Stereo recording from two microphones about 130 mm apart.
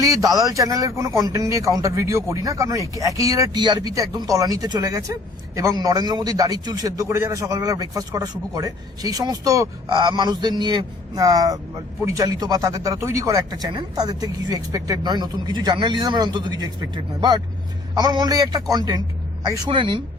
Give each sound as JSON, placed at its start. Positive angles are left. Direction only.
{"t": 0.0, "sound": "a man's voice", "side_deg": -25}